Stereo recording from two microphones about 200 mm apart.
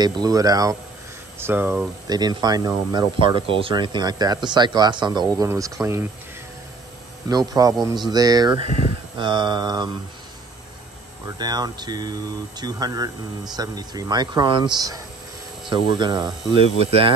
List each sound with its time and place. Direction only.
0.0 s speech: 20° right (ahead or behind)
7.2 s speech: 20° right (ahead or behind)
11.2 s speech: 20° right (ahead or behind)